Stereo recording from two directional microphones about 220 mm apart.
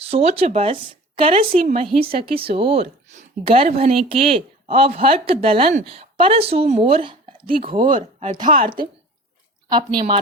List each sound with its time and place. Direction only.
0.0 s speech: 25° right (ahead or behind)
7.9 s a woman's voice: 35° right (ahead or behind)
9.6 s speech: 20° right (ahead or behind)